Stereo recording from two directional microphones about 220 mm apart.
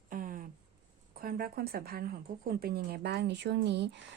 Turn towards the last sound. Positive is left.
turn(degrees=-50)  # may be behind; listen again after turning